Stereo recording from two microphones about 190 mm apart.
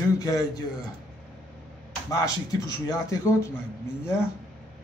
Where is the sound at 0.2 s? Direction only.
20° left (ahead or behind).